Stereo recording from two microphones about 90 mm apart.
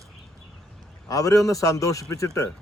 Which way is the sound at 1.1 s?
40° left (ahead or behind).